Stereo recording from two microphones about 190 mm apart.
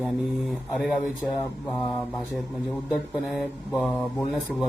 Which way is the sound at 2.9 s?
Centre (ahead or behind).